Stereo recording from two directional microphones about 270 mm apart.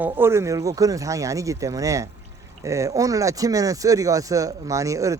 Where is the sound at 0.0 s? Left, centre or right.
Centre.